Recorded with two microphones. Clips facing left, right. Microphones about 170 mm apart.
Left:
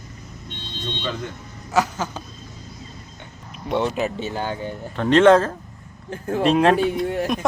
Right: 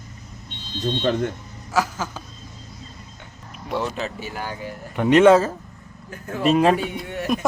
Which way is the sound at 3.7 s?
20° left (ahead or behind).